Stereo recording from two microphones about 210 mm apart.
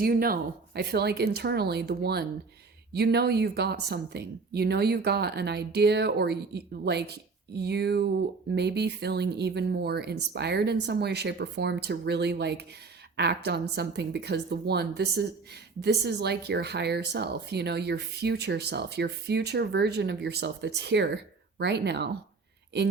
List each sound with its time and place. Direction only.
0.0 s speech: 45° right (ahead or behind)